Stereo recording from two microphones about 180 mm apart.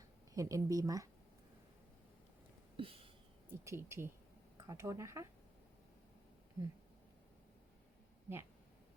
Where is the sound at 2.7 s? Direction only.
30° right (ahead or behind).